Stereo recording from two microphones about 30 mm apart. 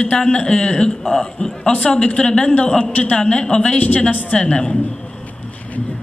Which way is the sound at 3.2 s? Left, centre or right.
Left.